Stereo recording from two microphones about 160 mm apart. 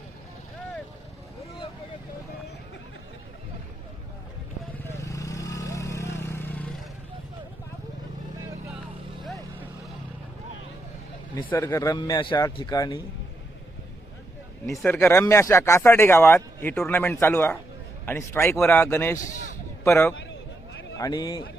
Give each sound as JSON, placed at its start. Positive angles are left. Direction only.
{"t": 4.8, "sound": "vehicle", "side_deg": 15}
{"t": 11.4, "sound": "speech", "side_deg": 15}
{"t": 14.8, "sound": "speech", "side_deg": 5}